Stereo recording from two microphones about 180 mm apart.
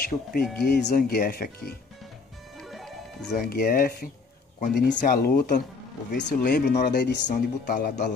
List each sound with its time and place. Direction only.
0.0 s speech: 55° left (ahead or behind)
2.6 s music: centre (ahead or behind)
3.4 s speech: 55° left (ahead or behind)
6.1 s speech: 70° left (ahead or behind)
7.2 s speech: 45° left (ahead or behind)